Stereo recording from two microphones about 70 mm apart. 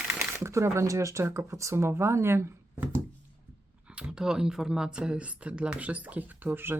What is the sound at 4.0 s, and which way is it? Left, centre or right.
Speech, centre.